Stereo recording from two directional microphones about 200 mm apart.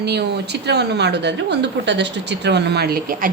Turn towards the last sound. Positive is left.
turn(degrees=-45)  # may be behind; listen again after turning